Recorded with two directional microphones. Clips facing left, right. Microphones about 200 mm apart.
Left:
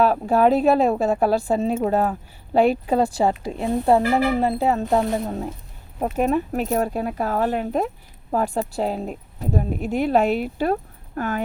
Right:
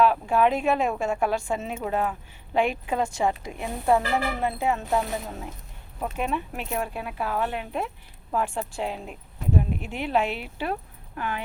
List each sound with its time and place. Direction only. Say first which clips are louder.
0.0 s a woman's voice: left 4 dB; 40° left (ahead or behind)